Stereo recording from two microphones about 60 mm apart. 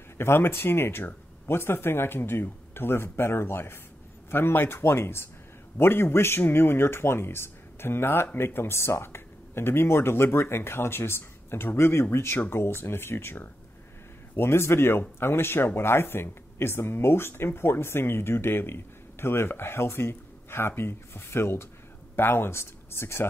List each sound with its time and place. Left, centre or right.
0.2 s speech: left